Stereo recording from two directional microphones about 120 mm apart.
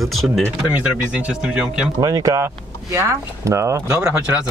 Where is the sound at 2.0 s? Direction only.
30° right (ahead or behind).